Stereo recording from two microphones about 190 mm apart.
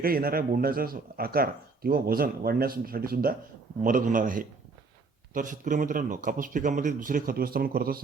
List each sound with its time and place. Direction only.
0.0 s speech: 50° right (ahead or behind)